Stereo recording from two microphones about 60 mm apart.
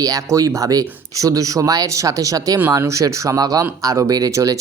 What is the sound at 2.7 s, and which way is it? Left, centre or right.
Speech, right.